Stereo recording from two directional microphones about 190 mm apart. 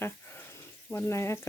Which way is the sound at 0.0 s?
10° left (ahead or behind).